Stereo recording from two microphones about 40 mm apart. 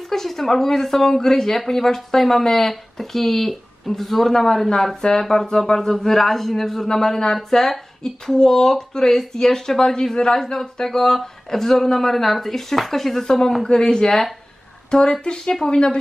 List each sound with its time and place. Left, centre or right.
0.1 s speech: centre
7.3 s speech: centre
13.7 s speech: centre